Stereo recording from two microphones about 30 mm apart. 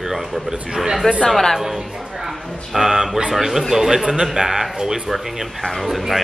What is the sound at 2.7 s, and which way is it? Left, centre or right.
A man's voice, centre.